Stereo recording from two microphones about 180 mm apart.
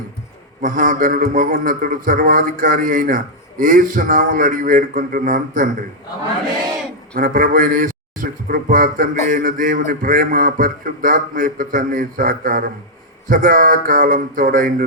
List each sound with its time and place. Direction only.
0.6 s a man's voice: 50° right (ahead or behind)
7.2 s a man's voice: 50° right (ahead or behind)